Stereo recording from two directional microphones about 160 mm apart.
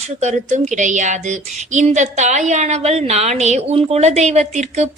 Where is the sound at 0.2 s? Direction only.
45° right (ahead or behind).